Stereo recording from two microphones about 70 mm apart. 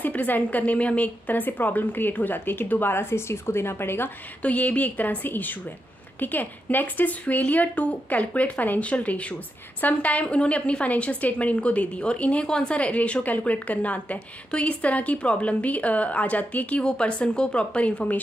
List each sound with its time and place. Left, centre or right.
0.0 s a woman's voice: left
4.4 s a woman's voice: left